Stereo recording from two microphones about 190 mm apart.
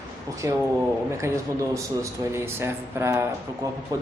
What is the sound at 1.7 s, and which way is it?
A man's voice, 15° right (ahead or behind).